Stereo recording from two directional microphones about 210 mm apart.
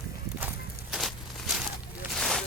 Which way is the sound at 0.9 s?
Centre (ahead or behind).